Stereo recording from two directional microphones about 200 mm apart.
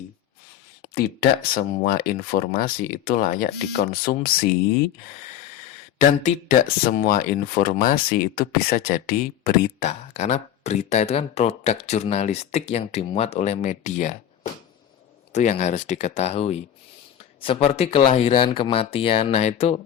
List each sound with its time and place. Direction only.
0.9 s speech: 50° left (ahead or behind)
6.0 s speech: 40° left (ahead or behind)
10.2 s speech: 35° left (ahead or behind)
15.3 s speech: 35° left (ahead or behind)